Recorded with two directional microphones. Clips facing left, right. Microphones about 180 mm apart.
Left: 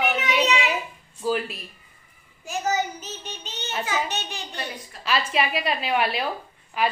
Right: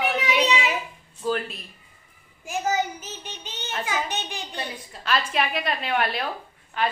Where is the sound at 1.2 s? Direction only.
5° left (ahead or behind).